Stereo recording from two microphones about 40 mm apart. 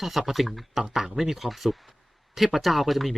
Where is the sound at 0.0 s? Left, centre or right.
Centre.